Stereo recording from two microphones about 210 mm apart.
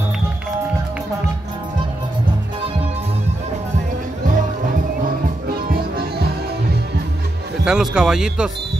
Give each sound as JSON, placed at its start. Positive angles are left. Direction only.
{"t": 5.7, "sound": "music", "side_deg": -45}
{"t": 7.6, "sound": "speech", "side_deg": -5}